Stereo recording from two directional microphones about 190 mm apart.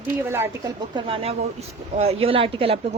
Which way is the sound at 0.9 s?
30° right (ahead or behind).